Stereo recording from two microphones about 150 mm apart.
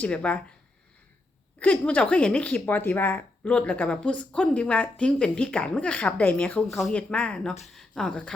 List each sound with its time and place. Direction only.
0.0 s speech: 10° left (ahead or behind)
1.5 s speech: 10° left (ahead or behind)